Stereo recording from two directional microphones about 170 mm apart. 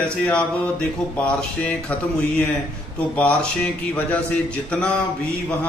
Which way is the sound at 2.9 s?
10° left (ahead or behind).